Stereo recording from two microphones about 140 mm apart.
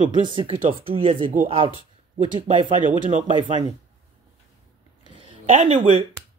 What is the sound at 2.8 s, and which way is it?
Speech, 65° right (ahead or behind).